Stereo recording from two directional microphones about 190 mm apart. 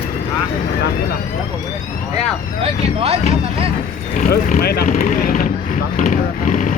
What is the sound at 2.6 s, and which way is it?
Speech, 30° right (ahead or behind).